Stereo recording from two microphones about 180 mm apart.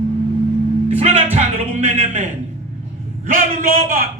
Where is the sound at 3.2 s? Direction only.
50° right (ahead or behind).